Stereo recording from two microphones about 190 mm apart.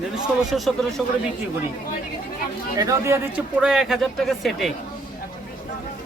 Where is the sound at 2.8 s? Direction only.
15° right (ahead or behind); by 4.7 s centre (ahead or behind).